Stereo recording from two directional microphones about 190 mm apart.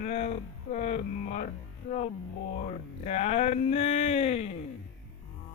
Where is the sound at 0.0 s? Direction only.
35° left (ahead or behind).